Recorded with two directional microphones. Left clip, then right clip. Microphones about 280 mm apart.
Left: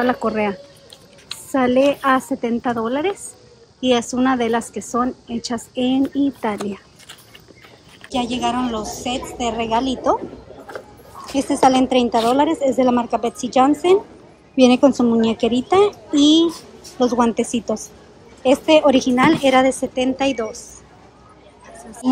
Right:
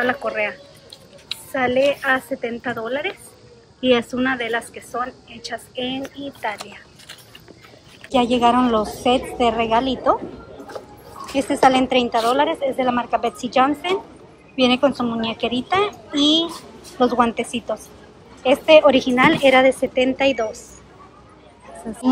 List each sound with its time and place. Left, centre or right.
0.0 s a woman's voice: centre
8.1 s a woman's voice: centre
11.3 s a woman's voice: centre